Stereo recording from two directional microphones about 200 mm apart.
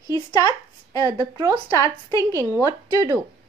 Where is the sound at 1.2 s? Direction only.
20° right (ahead or behind).